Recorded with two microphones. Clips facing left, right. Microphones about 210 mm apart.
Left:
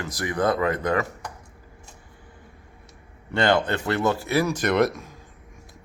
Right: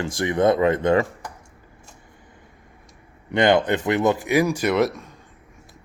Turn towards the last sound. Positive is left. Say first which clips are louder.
# right 1 dB
turn(degrees=0)  # may be behind; listen again after turning